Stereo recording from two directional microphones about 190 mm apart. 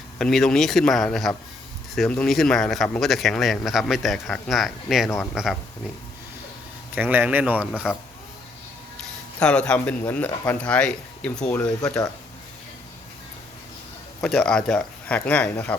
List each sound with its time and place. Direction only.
0.2 s speech: centre (ahead or behind)
6.9 s speech: 10° right (ahead or behind)
9.4 s speech: 5° left (ahead or behind)
10.6 s speech: 5° left (ahead or behind)
14.2 s speech: 5° left (ahead or behind)